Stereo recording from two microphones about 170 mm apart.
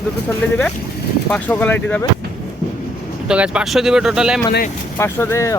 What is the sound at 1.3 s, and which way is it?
Speech, 10° left (ahead or behind).